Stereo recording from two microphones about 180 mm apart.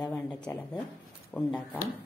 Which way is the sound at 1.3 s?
5° left (ahead or behind).